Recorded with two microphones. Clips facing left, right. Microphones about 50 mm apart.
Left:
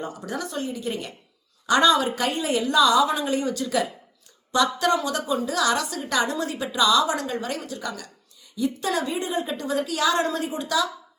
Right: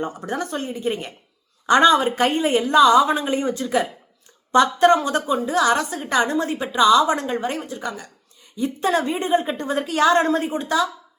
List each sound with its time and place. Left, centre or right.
0.0 s a woman's voice: right